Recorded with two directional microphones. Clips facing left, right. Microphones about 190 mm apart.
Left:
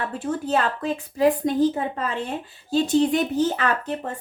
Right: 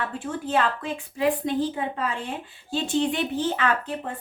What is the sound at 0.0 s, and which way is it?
A woman's voice, 40° left (ahead or behind).